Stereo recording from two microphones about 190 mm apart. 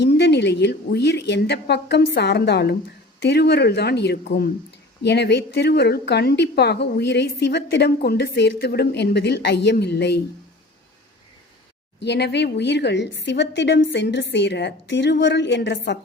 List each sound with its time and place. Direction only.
0.0 s a woman's voice: 60° left (ahead or behind)
11.9 s a woman's voice: 65° left (ahead or behind)